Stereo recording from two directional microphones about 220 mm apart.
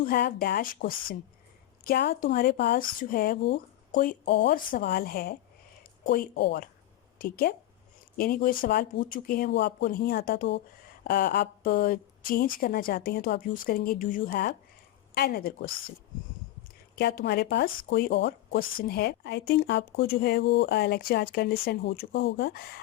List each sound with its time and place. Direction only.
0.0 s a woman's voice: 45° left (ahead or behind)
16.9 s speech: 40° left (ahead or behind)